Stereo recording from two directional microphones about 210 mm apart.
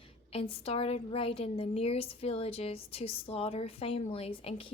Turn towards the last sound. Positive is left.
turn(degrees=25)  # may be behind; listen again after turning